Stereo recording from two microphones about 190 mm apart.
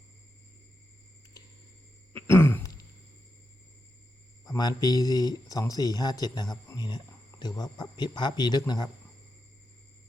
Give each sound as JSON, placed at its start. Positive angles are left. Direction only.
{"t": 2.1, "sound": "throat clearing", "side_deg": 10}
{"t": 4.4, "sound": "speech", "side_deg": 20}